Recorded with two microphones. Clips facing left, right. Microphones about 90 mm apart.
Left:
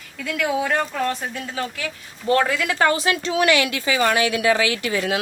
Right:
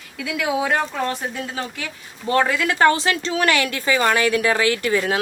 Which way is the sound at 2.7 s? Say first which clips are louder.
Right 3 dB; 35° right (ahead or behind).